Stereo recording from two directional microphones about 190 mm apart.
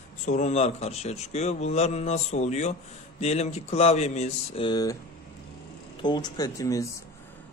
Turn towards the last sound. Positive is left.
turn(degrees=15)  # may be behind; listen again after turning